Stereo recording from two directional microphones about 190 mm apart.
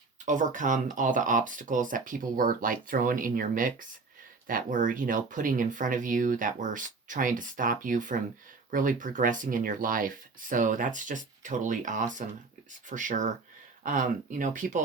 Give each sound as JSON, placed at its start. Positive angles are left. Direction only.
{"t": 0.3, "sound": "speech", "side_deg": -40}